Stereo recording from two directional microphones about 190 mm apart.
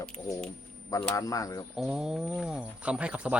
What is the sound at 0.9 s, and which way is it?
Speech, 20° left (ahead or behind).